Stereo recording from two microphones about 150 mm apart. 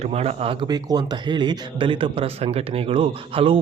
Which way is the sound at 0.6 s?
25° right (ahead or behind).